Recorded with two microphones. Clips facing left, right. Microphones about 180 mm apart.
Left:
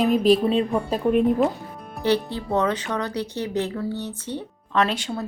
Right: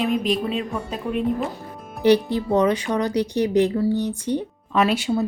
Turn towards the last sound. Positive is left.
turn(degrees=-10)  # may be behind; listen again after turning